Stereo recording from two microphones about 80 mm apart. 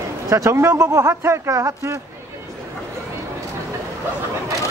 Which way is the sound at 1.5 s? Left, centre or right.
Right.